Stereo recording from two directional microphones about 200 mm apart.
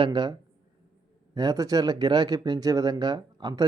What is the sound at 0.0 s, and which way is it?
Speech, 20° right (ahead or behind).